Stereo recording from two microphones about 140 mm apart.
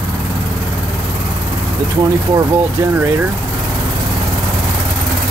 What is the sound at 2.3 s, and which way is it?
Speech, 15° right (ahead or behind).